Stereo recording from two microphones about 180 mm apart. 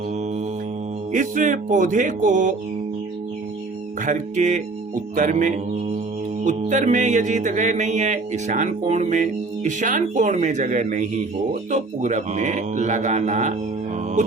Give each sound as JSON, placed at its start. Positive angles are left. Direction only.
{"t": 1.1, "sound": "music", "side_deg": -45}
{"t": 4.0, "sound": "music", "side_deg": -45}
{"t": 11.7, "sound": "mantra", "side_deg": -40}